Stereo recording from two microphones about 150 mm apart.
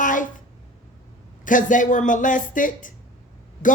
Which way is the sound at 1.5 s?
60° left (ahead or behind).